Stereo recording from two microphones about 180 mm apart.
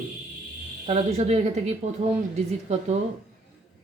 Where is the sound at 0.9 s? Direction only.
35° right (ahead or behind).